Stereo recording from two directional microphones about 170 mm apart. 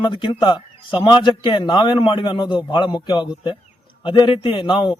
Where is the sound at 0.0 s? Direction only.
25° left (ahead or behind).